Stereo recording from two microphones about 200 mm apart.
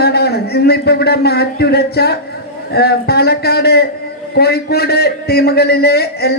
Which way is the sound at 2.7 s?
50° left (ahead or behind).